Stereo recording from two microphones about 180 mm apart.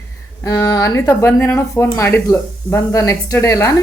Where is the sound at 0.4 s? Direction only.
15° left (ahead or behind).